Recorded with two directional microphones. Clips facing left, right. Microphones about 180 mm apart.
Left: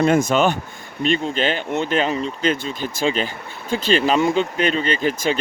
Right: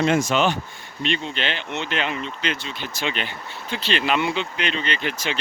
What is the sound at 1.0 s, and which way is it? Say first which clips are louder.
Speech: left 6 dB; 40° left (ahead or behind).